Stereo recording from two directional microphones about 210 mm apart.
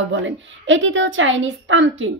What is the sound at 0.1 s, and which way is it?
A woman's voice, 65° right (ahead or behind).